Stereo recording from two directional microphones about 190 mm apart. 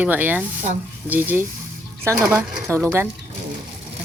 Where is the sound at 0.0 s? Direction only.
10° right (ahead or behind).